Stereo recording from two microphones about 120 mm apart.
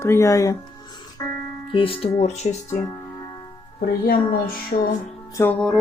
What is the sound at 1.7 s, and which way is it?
Speech, 50° left (ahead or behind).